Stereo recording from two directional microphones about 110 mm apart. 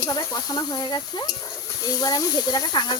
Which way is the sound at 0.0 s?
35° left (ahead or behind).